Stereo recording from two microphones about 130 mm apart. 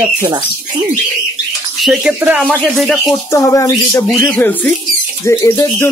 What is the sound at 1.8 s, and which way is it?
Speech, 5° right (ahead or behind).